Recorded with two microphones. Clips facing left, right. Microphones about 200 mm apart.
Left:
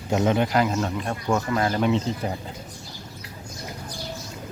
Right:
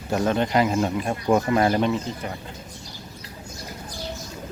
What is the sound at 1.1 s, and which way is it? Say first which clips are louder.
Speech: right 5 dB; 25° right (ahead or behind).